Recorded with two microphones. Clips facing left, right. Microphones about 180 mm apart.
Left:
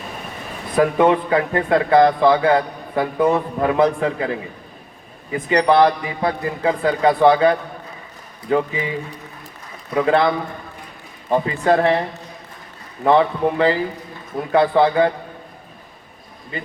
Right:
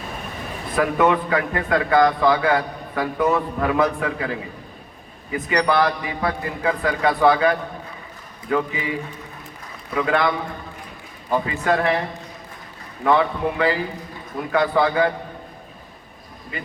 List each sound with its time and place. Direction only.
0.8 s a man's voice: 30° left (ahead or behind)
9.9 s a man's voice: 30° left (ahead or behind)
13.1 s a man's voice: 30° left (ahead or behind)
16.5 s a man's voice: 30° left (ahead or behind)